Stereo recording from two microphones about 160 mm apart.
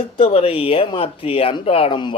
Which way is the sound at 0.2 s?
35° left (ahead or behind).